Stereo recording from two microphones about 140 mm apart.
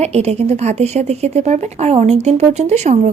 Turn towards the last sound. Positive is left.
turn(degrees=-55)  # may be behind; listen again after turning